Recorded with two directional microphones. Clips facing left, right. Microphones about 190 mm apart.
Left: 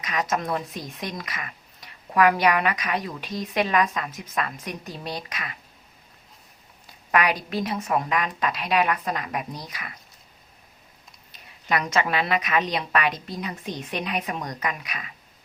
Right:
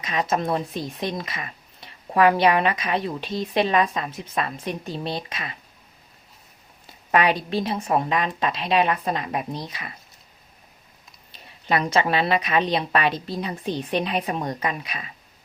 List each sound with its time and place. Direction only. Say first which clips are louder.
0.0 s speech: right 3 dB; 25° right (ahead or behind)
7.1 s speech: right 3 dB; 25° right (ahead or behind)
11.3 s speech: right 2 dB; 30° right (ahead or behind)